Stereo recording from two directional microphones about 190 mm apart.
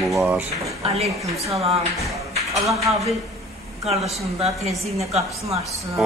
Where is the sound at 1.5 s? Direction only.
30° right (ahead or behind).